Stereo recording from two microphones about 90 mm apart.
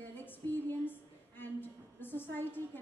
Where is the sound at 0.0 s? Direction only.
20° left (ahead or behind).